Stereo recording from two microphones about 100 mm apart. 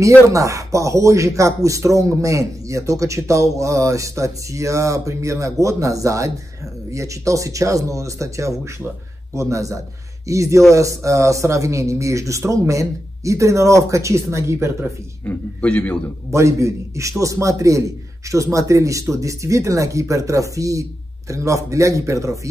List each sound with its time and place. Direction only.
0.3 s speech: 35° right (ahead or behind)
15.2 s a man's voice: 15° left (ahead or behind)
16.3 s a man's voice: 30° right (ahead or behind)